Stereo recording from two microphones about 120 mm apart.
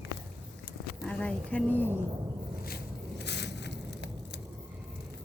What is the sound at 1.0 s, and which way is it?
Speech, 10° left (ahead or behind).